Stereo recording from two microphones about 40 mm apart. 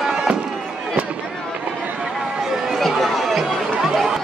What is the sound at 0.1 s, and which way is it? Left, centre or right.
Fireworks, right.